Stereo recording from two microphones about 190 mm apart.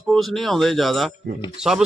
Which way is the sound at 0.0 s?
Centre (ahead or behind).